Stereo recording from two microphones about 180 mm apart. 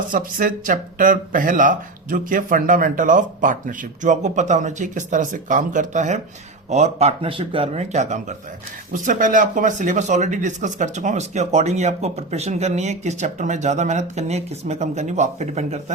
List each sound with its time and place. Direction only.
0.1 s speech: 50° right (ahead or behind)